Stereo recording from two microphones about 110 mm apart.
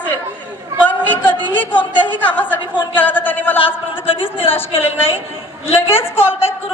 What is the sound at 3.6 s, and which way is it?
Speech, 55° left (ahead or behind).